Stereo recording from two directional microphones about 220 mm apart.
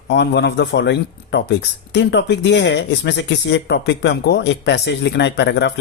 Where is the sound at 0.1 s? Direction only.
50° left (ahead or behind).